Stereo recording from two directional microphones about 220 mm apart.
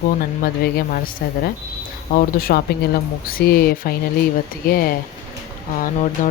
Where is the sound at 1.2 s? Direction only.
45° left (ahead or behind).